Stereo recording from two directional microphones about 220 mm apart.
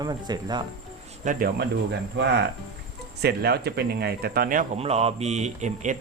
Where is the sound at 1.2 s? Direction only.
40° right (ahead or behind).